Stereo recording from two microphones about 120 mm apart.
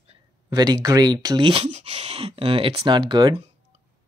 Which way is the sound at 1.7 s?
65° right (ahead or behind).